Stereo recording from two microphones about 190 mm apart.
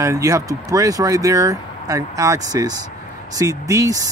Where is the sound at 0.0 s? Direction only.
15° right (ahead or behind).